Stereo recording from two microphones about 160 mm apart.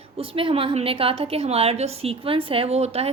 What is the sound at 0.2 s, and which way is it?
A woman's voice, 35° right (ahead or behind).